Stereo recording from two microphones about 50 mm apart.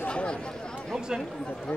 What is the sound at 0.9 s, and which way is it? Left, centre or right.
Chatter, centre.